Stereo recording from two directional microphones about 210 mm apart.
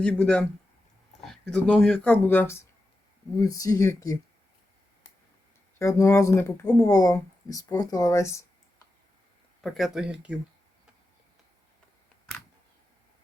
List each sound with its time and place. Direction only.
0.0 s speech: 5° left (ahead or behind)
5.8 s speech: 15° left (ahead or behind)
9.6 s speech: centre (ahead or behind)